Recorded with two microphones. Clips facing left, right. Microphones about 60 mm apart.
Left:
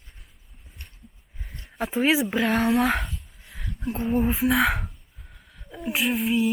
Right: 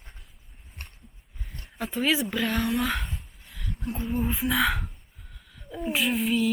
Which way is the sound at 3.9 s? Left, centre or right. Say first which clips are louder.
Left 5 dB; left.